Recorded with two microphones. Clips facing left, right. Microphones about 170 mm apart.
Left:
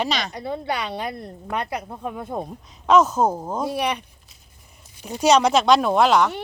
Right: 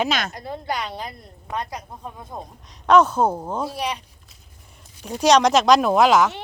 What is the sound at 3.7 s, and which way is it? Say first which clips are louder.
Speech: left 3 dB; 60° left (ahead or behind).